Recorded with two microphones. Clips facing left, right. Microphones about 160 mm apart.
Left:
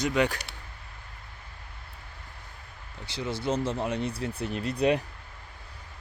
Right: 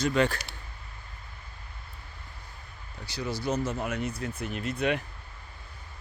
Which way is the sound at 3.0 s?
25° left (ahead or behind).